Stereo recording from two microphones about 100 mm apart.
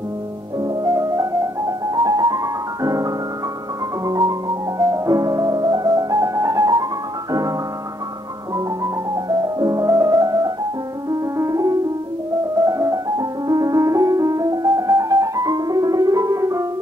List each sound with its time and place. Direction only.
0.6 s music: 40° right (ahead or behind)
1.7 s piano: 40° right (ahead or behind)
4.0 s music: 40° right (ahead or behind)
8.5 s music: 40° right (ahead or behind)